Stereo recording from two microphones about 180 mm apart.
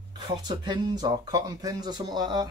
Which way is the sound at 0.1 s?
25° right (ahead or behind).